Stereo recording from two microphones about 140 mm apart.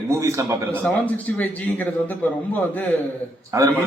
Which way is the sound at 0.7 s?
10° left (ahead or behind).